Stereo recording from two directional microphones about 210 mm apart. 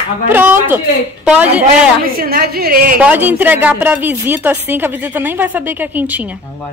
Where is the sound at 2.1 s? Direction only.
45° right (ahead or behind).